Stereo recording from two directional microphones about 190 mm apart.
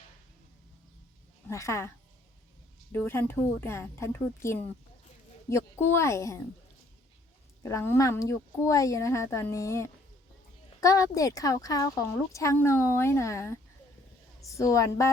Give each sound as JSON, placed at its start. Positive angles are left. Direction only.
{"t": 1.5, "sound": "speech", "side_deg": 15}
{"t": 2.9, "sound": "speech", "side_deg": 10}
{"t": 7.6, "sound": "speech", "side_deg": 15}